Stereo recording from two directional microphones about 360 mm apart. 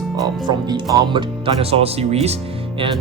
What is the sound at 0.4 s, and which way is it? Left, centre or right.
Speech, centre.